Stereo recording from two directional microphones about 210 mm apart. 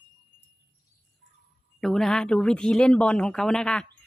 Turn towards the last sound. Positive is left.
turn(degrees=5)  # may be behind; listen again after turning